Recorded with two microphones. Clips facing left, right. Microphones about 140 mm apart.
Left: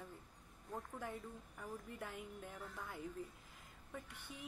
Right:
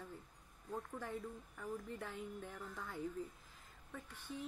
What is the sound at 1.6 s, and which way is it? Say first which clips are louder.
Speech: right 3 dB; 15° left (ahead or behind).